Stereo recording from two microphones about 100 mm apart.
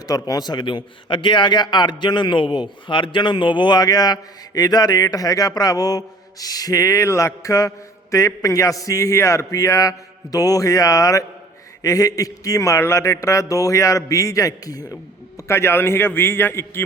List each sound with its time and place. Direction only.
0.3 s a man's voice: 40° left (ahead or behind)
15.4 s a man's voice: 25° left (ahead or behind)